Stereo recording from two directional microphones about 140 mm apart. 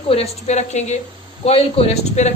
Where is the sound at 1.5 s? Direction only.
45° left (ahead or behind).